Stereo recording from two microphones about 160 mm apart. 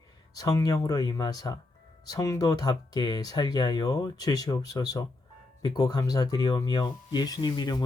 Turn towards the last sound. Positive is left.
turn(degrees=25)  # may be behind; listen again after turning